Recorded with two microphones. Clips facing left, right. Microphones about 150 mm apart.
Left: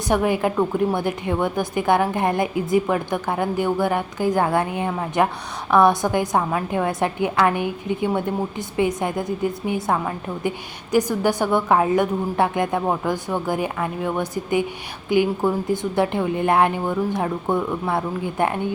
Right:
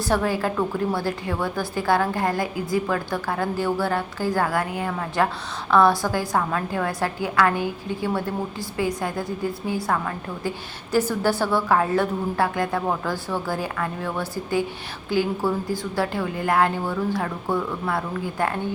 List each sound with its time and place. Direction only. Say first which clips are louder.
0.1 s a woman's voice: left 4 dB; 20° left (ahead or behind)